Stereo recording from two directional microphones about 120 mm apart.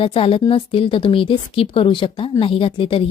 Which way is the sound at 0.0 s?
50° left (ahead or behind).